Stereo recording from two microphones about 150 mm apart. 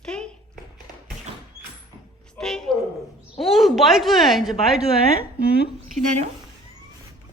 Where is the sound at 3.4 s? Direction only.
Centre (ahead or behind).